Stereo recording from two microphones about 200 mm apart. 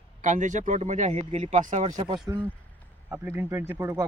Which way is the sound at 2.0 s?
20° right (ahead or behind).